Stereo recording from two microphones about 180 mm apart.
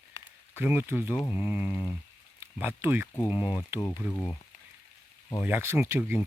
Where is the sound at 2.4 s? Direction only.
10° right (ahead or behind).